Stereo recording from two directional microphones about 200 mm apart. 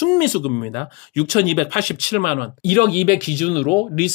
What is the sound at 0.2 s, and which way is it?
Speech, 45° left (ahead or behind).